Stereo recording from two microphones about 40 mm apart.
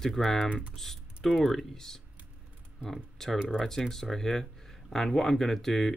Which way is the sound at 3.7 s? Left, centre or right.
Centre.